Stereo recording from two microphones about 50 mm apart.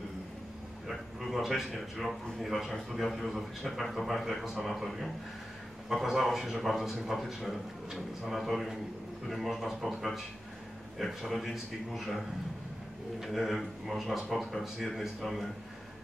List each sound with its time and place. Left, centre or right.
0.8 s a sound: centre
1.6 s a man's voice: centre
11.0 s a man's voice: centre
13.2 s a man's voice: centre